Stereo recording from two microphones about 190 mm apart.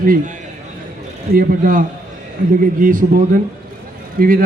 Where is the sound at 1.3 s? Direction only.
45° right (ahead or behind).